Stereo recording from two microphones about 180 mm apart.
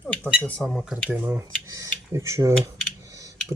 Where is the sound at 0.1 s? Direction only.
5° left (ahead or behind); by 2.6 s 15° right (ahead or behind).